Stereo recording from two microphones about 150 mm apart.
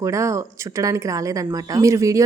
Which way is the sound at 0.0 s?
20° right (ahead or behind).